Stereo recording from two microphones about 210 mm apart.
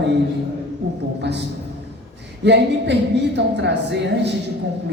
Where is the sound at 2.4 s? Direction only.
55° right (ahead or behind).